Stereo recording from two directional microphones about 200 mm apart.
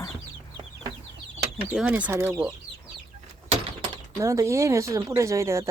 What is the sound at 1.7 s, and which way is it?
Speech, 5° right (ahead or behind).